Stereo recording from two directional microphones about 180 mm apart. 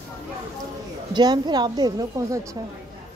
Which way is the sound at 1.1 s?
25° right (ahead or behind).